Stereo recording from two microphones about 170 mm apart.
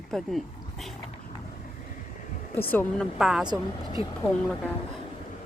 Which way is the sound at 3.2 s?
5° right (ahead or behind).